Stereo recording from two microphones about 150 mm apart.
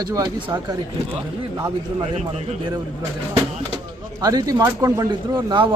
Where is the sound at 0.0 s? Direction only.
30° right (ahead or behind).